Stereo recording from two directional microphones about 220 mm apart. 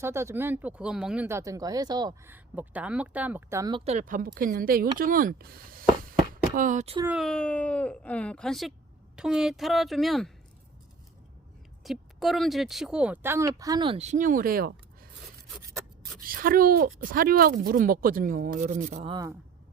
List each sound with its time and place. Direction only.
0.0 s speech: 10° right (ahead or behind); by 7.0 s 30° right (ahead or behind)
7.0 s speech: 5° right (ahead or behind)
11.8 s speech: centre (ahead or behind); by 14.7 s 40° right (ahead or behind)
16.1 s speech: 40° right (ahead or behind)
19.1 s speech: 15° right (ahead or behind)